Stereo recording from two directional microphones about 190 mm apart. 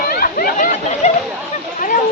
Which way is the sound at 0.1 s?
50° left (ahead or behind).